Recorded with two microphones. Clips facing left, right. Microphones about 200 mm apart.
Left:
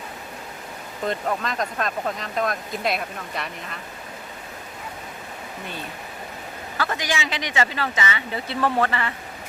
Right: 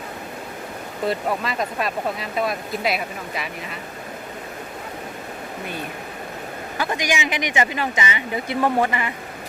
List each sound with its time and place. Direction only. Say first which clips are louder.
1.0 s speech: right 2 dB; 5° right (ahead or behind)
6.7 s speech: right 2 dB; 15° right (ahead or behind)